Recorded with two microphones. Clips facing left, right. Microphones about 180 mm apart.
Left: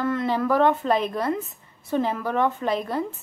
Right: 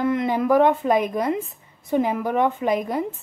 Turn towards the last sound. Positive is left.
turn(degrees=-15)  # may be behind; listen again after turning